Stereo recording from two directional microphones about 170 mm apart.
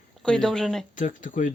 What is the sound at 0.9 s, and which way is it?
Speech, 50° left (ahead or behind).